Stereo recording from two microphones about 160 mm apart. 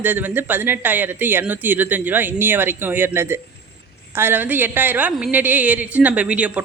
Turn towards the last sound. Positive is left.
turn(degrees=-10)  # may be behind; listen again after turning